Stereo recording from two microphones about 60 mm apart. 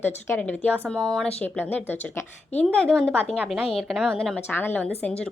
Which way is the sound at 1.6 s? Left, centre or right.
Left.